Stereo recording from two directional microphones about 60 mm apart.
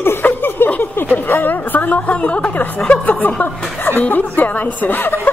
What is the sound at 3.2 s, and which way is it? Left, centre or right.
A woman's voice, left.